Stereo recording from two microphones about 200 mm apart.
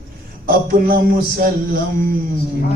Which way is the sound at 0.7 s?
45° right (ahead or behind).